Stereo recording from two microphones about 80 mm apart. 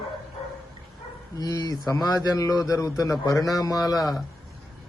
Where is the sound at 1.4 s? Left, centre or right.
Left.